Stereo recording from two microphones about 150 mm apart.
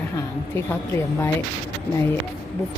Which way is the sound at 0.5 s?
15° left (ahead or behind).